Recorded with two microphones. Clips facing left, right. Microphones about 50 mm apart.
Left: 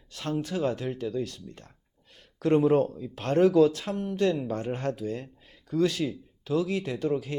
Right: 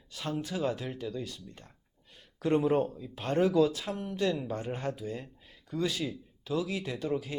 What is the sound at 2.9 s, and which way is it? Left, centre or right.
Speech, left.